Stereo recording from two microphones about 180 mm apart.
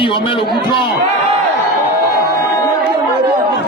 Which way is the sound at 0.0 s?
30° left (ahead or behind).